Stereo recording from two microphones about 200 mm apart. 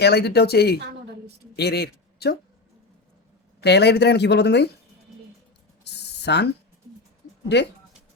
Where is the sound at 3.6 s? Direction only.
55° left (ahead or behind).